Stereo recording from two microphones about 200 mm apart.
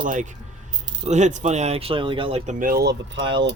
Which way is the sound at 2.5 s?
45° right (ahead or behind).